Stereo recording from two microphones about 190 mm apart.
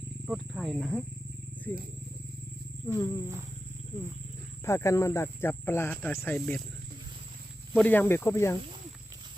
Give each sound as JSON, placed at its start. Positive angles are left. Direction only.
{"t": 0.3, "sound": "speech", "side_deg": 0}
{"t": 2.8, "sound": "speech", "side_deg": 15}
{"t": 4.6, "sound": "speech", "side_deg": 15}
{"t": 6.3, "sound": "speech", "side_deg": 0}
{"t": 7.7, "sound": "speech", "side_deg": 10}